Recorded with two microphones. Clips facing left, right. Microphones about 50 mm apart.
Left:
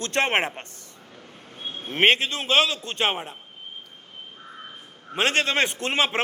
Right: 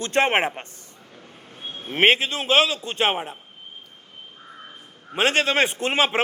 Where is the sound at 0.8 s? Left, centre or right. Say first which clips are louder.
Even; left.